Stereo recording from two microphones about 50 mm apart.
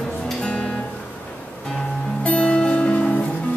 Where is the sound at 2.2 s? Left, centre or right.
Left.